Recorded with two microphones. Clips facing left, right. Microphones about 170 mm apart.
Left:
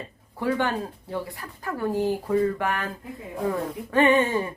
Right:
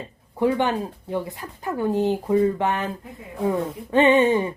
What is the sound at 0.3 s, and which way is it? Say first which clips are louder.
Speech: right 4 dB; 20° right (ahead or behind).